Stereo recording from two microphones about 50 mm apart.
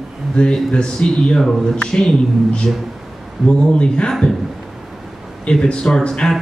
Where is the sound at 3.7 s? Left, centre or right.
Centre.